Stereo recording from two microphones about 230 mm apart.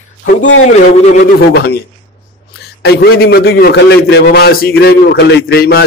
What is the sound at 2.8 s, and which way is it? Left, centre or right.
A man's voice, left.